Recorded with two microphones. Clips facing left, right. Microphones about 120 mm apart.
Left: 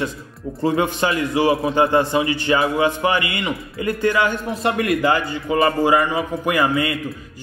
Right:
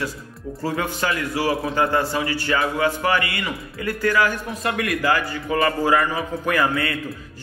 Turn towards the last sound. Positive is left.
turn(degrees=15)  # may be behind; listen again after turning